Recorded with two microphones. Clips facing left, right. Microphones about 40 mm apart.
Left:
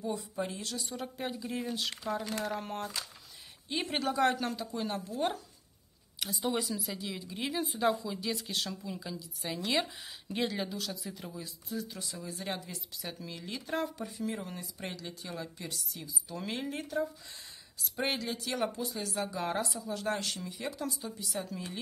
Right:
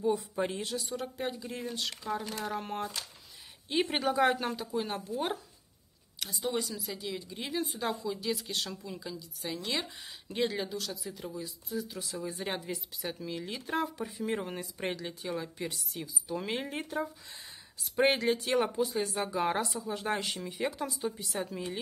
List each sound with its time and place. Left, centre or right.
0.4 s speech: right
0.7 s speech: centre
6.1 s speech: centre
12.4 s speech: right
13.0 s speech: centre
14.2 s speech: right
15.2 s speech: centre
15.7 s speech: right